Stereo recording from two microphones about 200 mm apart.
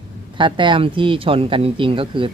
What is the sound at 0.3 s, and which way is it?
Speech, 25° right (ahead or behind).